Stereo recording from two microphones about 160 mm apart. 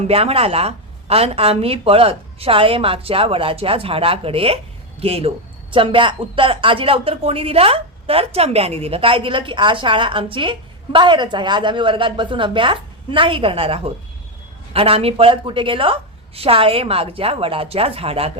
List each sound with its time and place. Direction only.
0.0 s speech: 40° right (ahead or behind)